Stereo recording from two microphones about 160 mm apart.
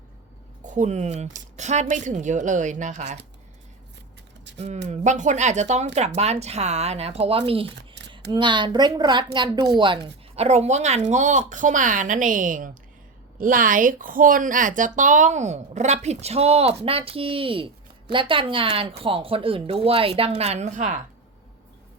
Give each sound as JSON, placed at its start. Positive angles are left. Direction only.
{"t": 0.6, "sound": "speech", "side_deg": -50}
{"t": 4.9, "sound": "a woman's voice", "side_deg": -50}